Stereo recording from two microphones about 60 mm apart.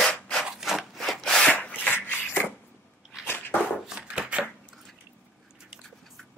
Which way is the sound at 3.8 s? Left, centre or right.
Centre.